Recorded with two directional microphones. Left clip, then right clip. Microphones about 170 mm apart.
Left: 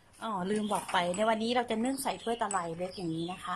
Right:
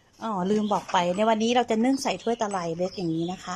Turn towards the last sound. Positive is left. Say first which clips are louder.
# right 7 dB
turn(degrees=-20)  # may be behind; listen again after turning